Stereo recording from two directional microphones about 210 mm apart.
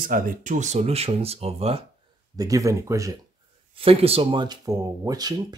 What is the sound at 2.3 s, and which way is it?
Speech, 15° right (ahead or behind).